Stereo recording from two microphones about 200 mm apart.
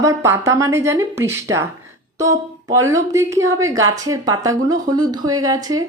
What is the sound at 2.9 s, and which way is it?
A woman's voice, 15° right (ahead or behind).